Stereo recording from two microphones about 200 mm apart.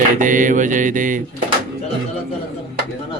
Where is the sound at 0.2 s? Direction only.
40° right (ahead or behind).